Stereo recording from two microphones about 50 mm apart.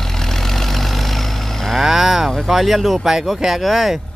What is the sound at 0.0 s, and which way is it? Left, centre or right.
Vehicle, centre.